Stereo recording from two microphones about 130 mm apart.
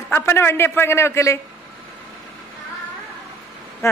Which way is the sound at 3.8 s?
20° left (ahead or behind).